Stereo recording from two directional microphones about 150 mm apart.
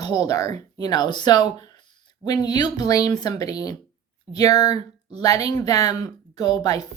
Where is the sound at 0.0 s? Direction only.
25° left (ahead or behind).